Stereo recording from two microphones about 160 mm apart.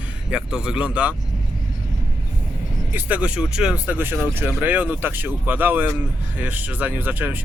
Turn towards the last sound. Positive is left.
turn(degrees=-10)  # may be behind; listen again after turning